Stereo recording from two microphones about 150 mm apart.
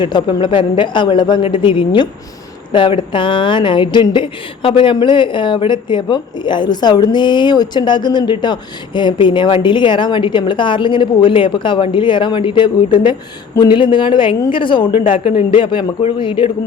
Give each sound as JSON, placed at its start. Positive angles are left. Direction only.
{"t": 0.0, "sound": "speech", "side_deg": 30}